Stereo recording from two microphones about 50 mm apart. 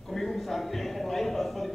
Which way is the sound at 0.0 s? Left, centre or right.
Centre.